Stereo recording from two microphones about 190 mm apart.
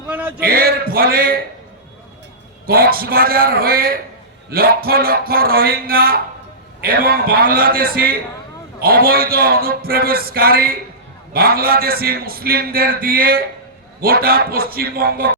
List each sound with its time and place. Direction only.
0.3 s a man's voice: 50° right (ahead or behind)
2.6 s a man's voice: 50° right (ahead or behind)